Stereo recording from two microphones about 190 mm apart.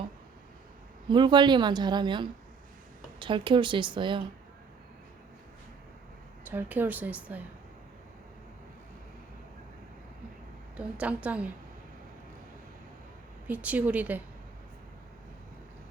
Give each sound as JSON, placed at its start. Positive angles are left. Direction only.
{"t": 1.0, "sound": "speech", "side_deg": -25}
{"t": 6.4, "sound": "a woman's voice", "side_deg": -10}
{"t": 10.8, "sound": "a woman's voice", "side_deg": -5}
{"t": 13.5, "sound": "a woman's voice", "side_deg": -10}